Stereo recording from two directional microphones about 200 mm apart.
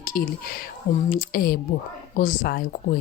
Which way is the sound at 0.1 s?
50° left (ahead or behind).